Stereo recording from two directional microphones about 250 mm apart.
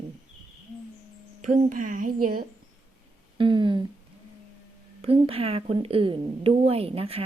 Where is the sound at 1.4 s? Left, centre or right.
Right.